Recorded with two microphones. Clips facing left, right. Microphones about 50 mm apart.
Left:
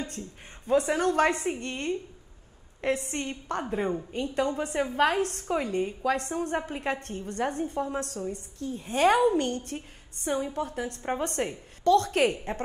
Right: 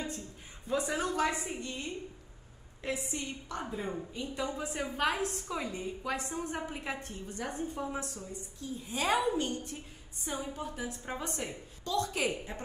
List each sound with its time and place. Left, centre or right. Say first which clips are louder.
0.7 s a woman's voice: left 8 dB; left